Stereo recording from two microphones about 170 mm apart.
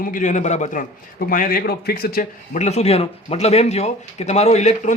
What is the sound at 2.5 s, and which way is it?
Speech, 40° left (ahead or behind).